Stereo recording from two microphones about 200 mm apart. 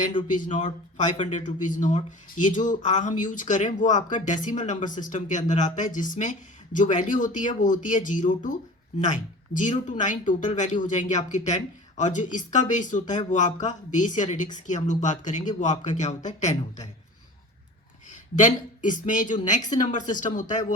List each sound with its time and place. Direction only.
0.3 s a man's voice: 40° left (ahead or behind)
18.3 s a man's voice: 40° left (ahead or behind)